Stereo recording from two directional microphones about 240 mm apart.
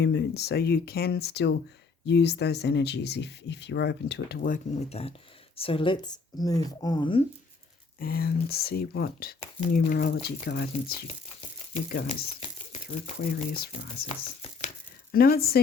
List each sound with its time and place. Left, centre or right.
0.0 s speech: left
7.9 s speech: left
11.7 s speech: left
15.1 s speech: left